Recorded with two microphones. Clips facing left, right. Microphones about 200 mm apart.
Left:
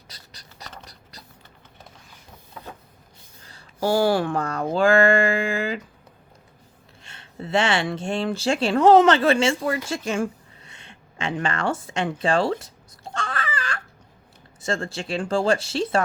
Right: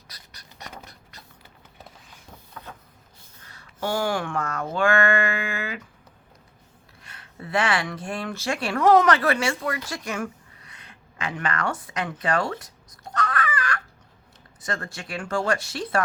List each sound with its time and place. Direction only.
0.1 s scratch: 30° left (ahead or behind)
0.6 s a sound: 10° right (ahead or behind)
2.5 s vehicle: 15° left (ahead or behind)
3.4 s speech: 30° left (ahead or behind)
4.7 s a sound: 30° left (ahead or behind)
7.0 s speech: 25° left (ahead or behind)